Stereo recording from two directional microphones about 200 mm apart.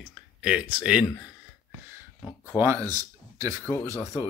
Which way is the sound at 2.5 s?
15° right (ahead or behind).